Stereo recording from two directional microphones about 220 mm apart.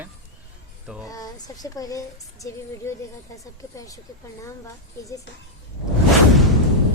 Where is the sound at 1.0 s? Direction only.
15° left (ahead or behind).